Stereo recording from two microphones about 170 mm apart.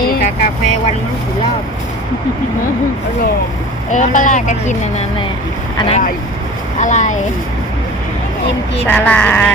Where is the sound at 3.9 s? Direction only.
50° left (ahead or behind).